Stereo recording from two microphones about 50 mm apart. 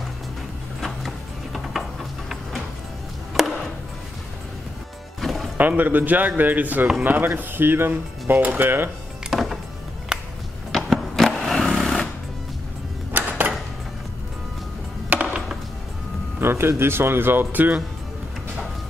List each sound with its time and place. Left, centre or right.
0.7 s music: centre
3.3 s a sound: centre
5.2 s music: centre
5.6 s speech: right
7.2 s speech: right
7.9 s speech: right
9.3 s music: centre
10.7 s a sound: centre
11.2 s vehicle: centre
13.1 s a sound: right
15.2 s music: centre
16.3 s speech: right